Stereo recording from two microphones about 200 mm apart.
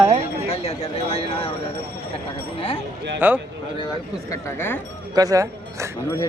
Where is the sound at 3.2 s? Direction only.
10° right (ahead or behind).